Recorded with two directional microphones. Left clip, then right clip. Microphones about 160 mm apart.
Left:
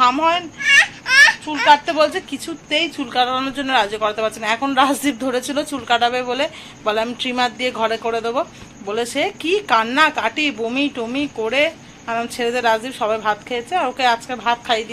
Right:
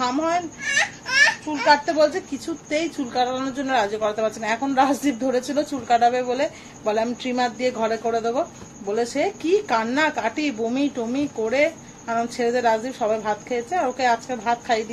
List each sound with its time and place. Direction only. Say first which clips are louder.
0.0 s a child's voice: left 7 dB; 5° right (ahead or behind)
0.6 s baby cry: left 9 dB; 30° right (ahead or behind)
1.7 s speech: left 3 dB; 5° right (ahead or behind)